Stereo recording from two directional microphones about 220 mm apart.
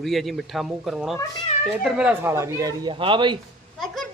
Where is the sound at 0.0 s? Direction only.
Centre (ahead or behind); by 3.3 s 20° right (ahead or behind).